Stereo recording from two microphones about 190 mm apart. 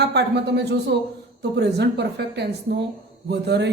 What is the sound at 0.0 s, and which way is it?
A man's voice, 60° right (ahead or behind).